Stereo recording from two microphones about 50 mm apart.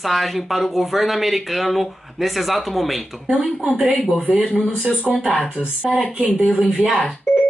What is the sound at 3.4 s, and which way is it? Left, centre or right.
Speech, right.